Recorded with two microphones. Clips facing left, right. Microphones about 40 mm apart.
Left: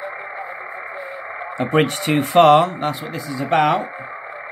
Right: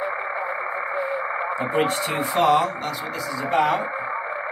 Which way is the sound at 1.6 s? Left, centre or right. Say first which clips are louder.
Left 6 dB; left.